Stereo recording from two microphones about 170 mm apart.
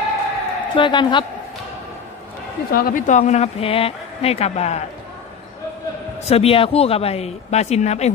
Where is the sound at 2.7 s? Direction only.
50° left (ahead or behind).